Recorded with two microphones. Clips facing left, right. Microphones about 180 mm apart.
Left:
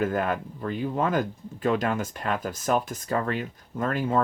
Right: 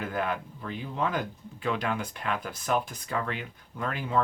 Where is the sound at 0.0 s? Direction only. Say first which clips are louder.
Left 5 dB; 45° left (ahead or behind).